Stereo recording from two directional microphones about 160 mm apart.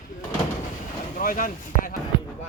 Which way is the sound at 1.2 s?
60° left (ahead or behind).